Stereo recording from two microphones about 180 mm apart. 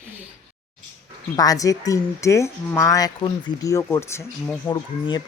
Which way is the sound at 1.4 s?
20° left (ahead or behind).